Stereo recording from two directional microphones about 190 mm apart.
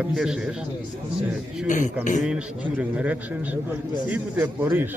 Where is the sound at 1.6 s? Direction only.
40° left (ahead or behind).